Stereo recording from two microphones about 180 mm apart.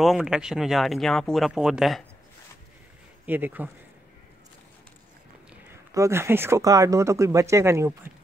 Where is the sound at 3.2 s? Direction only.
10° right (ahead or behind).